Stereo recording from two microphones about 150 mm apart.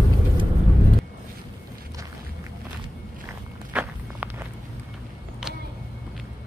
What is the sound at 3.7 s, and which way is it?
Walk, 10° right (ahead or behind).